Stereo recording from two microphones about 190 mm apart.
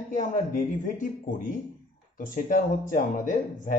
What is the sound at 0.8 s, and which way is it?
Speech, 45° left (ahead or behind).